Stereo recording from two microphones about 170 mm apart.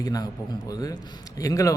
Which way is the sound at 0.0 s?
20° left (ahead or behind).